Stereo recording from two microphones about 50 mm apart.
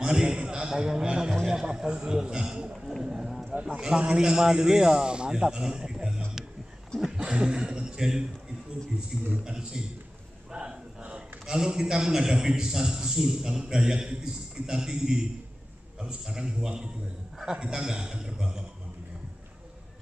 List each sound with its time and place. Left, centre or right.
0.0 s a man's voice: centre
9.4 s a man's voice: centre